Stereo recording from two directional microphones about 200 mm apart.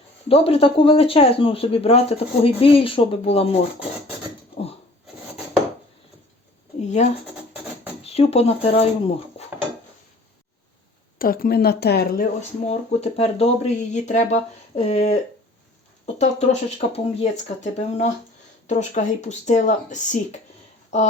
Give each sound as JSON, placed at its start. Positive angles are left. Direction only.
{"t": 0.3, "sound": "speech", "side_deg": 30}
{"t": 6.8, "sound": "speech", "side_deg": 35}
{"t": 9.4, "sound": "dishes", "side_deg": 30}
{"t": 11.2, "sound": "speech", "side_deg": 45}